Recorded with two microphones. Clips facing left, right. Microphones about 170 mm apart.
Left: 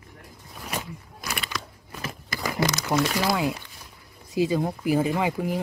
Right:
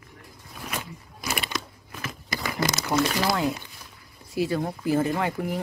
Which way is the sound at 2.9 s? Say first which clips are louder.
Right 1 dB; 5° left (ahead or behind).